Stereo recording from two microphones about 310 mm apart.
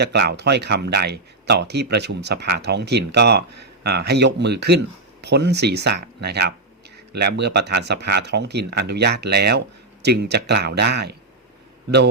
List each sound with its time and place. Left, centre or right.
0.0 s speech: right